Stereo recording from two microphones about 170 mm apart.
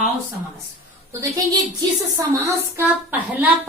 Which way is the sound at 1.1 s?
20° right (ahead or behind).